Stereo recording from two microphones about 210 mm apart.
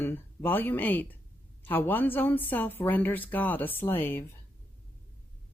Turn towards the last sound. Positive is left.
turn(degrees=10)  # may be behind; listen again after turning